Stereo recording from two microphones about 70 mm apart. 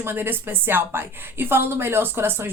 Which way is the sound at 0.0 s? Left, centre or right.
Right.